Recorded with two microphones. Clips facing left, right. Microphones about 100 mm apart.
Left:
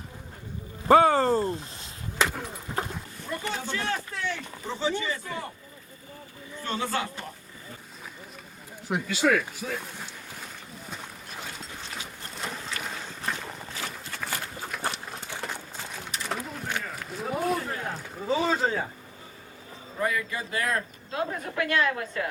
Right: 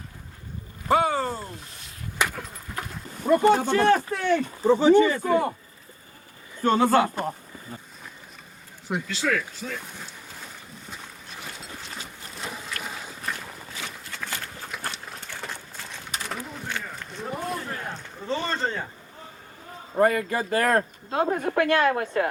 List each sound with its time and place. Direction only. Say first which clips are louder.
0.9 s a sound: left 4 dB; 40° left (ahead or behind)
2.7 s dog: left 4 dB; 25° left (ahead or behind)
3.4 s speech: right 11 dB; 50° right (ahead or behind)
6.6 s speech: right 10 dB; 50° right (ahead or behind)
9.0 s speech: left 4 dB; 15° left (ahead or behind)
12.5 s boat: right 1 dB; 5° right (ahead or behind)
13.8 s a sound: left 1 dB; 5° left (ahead or behind)
14.7 s horse: left 3 dB; 5° left (ahead or behind)
15.4 s a sound: left 1 dB; 10° left (ahead or behind)
20.0 s speech: right 8 dB; 50° right (ahead or behind)
21.7 s speech: right 2 dB; 45° right (ahead or behind)